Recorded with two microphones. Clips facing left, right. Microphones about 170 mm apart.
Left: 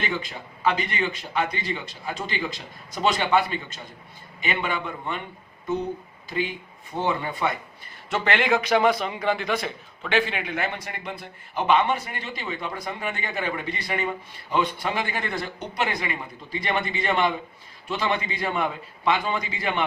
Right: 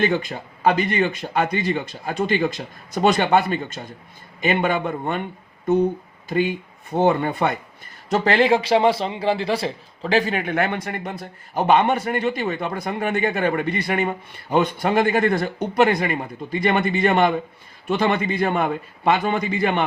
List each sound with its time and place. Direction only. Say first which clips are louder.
0.0 s a man's voice: right 9 dB; 50° right (ahead or behind)
6.2 s a man's voice: right 7 dB; 50° right (ahead or behind)
8.1 s a man's voice: right 6 dB; 35° right (ahead or behind); by 19.8 s 55° right (ahead or behind)